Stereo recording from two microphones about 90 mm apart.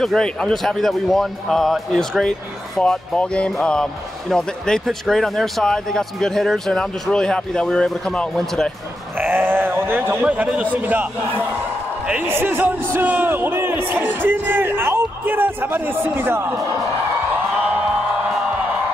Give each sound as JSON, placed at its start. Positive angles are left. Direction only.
{"t": 0.0, "sound": "speech", "side_deg": 5}
{"t": 9.2, "sound": "sheep", "side_deg": -25}
{"t": 10.2, "sound": "a man's voice", "side_deg": -15}